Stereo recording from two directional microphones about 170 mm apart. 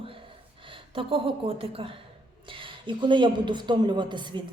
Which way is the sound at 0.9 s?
30° right (ahead or behind).